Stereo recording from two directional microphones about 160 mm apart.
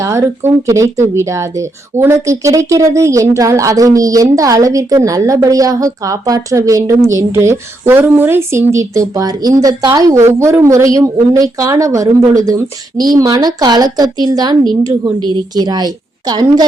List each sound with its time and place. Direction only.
0.0 s speech: 20° right (ahead or behind)